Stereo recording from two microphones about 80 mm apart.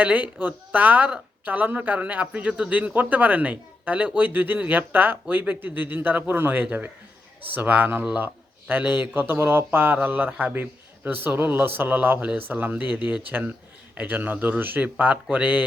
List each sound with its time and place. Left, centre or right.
0.0 s a man's voice: centre